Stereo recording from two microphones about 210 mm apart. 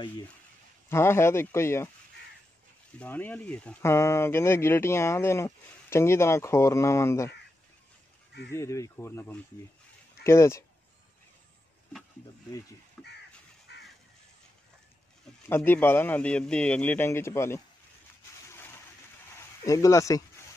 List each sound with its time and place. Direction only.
0.8 s speech: 10° left (ahead or behind)
3.0 s speech: 10° left (ahead or behind)
8.5 s speech: 15° left (ahead or behind)
13.0 s crow: 5° left (ahead or behind)
13.7 s crow: 50° left (ahead or behind)
15.4 s speech: 10° left (ahead or behind)
19.6 s speech: 15° left (ahead or behind)